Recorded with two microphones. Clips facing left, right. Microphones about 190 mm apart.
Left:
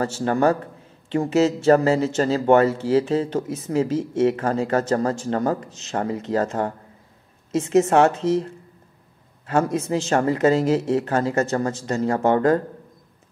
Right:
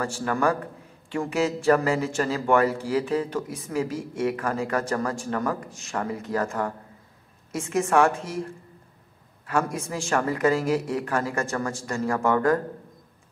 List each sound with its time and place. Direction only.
0.0 s speech: 25° left (ahead or behind)
9.5 s speech: 25° left (ahead or behind)